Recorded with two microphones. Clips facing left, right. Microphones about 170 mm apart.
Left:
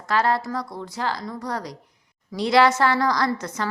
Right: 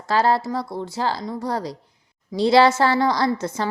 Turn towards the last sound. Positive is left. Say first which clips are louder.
# right 3 dB
turn(degrees=-25)  # may be behind; listen again after turning